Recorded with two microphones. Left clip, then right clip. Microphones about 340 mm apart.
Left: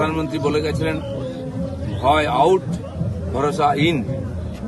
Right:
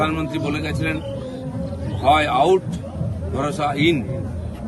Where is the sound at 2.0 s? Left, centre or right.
Centre.